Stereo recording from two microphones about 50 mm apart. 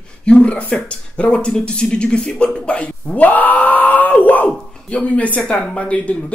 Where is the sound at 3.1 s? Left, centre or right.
Left.